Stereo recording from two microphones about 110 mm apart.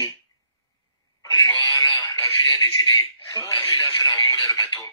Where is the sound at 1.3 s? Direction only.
35° left (ahead or behind).